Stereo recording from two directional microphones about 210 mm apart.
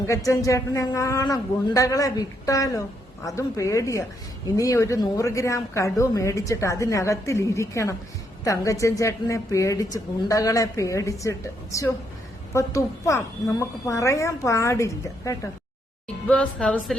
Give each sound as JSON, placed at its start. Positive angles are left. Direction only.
{"t": 0.0, "sound": "speech", "side_deg": 15}